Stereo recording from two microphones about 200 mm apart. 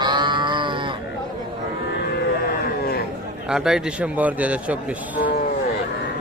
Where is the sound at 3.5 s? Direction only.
5° right (ahead or behind).